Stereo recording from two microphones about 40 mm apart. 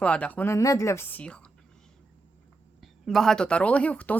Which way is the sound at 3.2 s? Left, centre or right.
Left.